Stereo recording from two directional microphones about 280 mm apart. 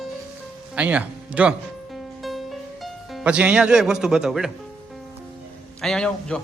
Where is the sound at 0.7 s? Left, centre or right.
Centre.